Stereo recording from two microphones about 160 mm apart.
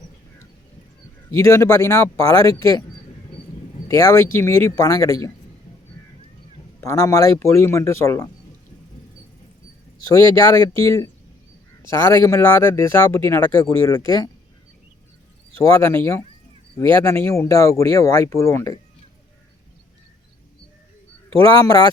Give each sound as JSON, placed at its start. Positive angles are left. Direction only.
{"t": 1.3, "sound": "a man's voice", "side_deg": 20}
{"t": 3.8, "sound": "speech", "side_deg": 20}
{"t": 6.8, "sound": "a man's voice", "side_deg": 20}
{"t": 10.1, "sound": "a man's voice", "side_deg": 20}
{"t": 15.6, "sound": "a man's voice", "side_deg": 15}
{"t": 21.3, "sound": "a man's voice", "side_deg": -35}
{"t": 21.6, "sound": "speech", "side_deg": 25}